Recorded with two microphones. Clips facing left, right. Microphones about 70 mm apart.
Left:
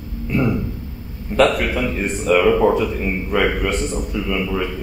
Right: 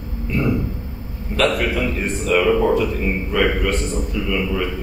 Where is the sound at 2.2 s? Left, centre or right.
Centre.